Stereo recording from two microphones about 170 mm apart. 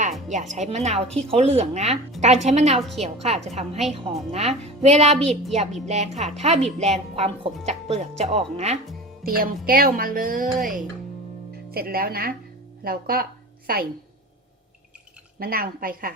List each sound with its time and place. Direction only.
0.3 s speech: 45° right (ahead or behind)
5.2 s a woman's voice: centre (ahead or behind)
5.8 s speech: 40° right (ahead or behind)
9.2 s speech: 60° right (ahead or behind)
15.4 s speech: 60° right (ahead or behind)